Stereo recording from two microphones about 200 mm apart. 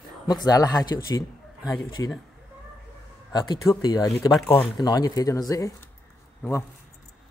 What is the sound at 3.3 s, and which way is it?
Speech, 20° left (ahead or behind).